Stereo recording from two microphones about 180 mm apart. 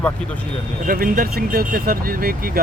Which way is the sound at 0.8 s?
50° right (ahead or behind).